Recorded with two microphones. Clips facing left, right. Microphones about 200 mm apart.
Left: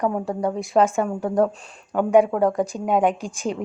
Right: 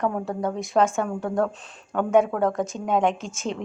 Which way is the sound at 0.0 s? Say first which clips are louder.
Left 3 dB; 15° left (ahead or behind).